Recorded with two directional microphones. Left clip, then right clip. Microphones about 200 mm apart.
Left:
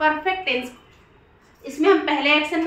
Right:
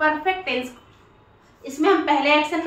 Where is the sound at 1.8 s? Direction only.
5° left (ahead or behind).